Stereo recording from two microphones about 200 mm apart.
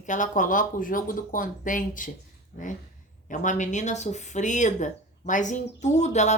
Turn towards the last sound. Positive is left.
turn(degrees=35)  # may be behind; listen again after turning